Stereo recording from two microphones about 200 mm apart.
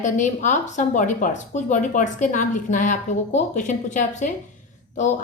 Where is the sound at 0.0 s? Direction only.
40° left (ahead or behind).